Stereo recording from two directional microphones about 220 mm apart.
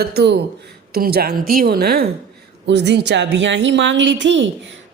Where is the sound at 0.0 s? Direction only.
45° right (ahead or behind).